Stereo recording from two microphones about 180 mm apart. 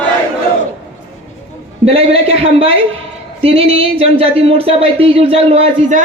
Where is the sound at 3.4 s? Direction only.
30° right (ahead or behind).